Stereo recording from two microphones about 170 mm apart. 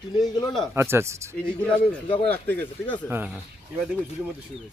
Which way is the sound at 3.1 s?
10° right (ahead or behind).